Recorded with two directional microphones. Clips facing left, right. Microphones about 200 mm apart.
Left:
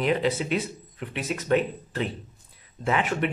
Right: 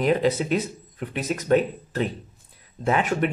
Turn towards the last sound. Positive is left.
turn(degrees=-45)  # may be behind; listen again after turning